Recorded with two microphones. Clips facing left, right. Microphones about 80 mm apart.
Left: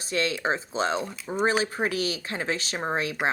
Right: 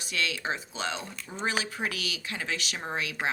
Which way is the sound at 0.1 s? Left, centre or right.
Left.